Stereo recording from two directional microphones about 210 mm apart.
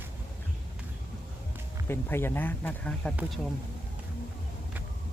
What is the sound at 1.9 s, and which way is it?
Speech, 10° left (ahead or behind).